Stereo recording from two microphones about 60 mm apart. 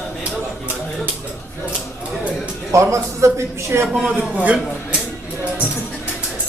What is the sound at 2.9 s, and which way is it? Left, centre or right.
Speech, right.